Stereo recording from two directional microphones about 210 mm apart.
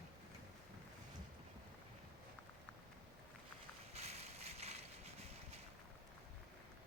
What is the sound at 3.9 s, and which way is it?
Boat, 30° right (ahead or behind).